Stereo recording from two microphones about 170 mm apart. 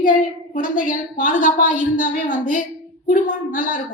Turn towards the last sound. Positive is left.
turn(degrees=50)  # may be behind; listen again after turning